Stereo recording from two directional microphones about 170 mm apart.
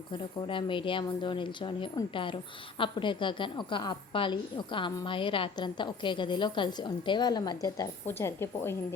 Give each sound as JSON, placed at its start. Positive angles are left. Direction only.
{"t": 0.1, "sound": "speech", "side_deg": 30}